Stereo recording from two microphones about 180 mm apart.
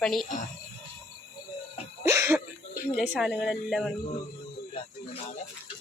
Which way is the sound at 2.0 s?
15° right (ahead or behind).